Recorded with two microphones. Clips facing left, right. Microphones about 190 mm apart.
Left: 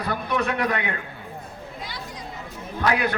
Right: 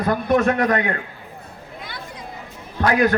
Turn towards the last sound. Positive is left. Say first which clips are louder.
# right 7 dB
turn(degrees=-45)  # may be behind; listen again after turning